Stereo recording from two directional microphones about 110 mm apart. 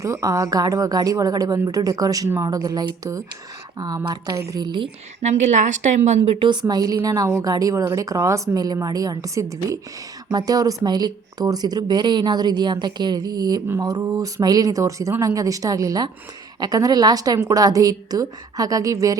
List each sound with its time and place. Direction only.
0.0 s speech: 30° right (ahead or behind)
4.6 s a woman's voice: 45° right (ahead or behind)
5.2 s a woman's voice: 90° right
6.4 s speech: 40° right (ahead or behind)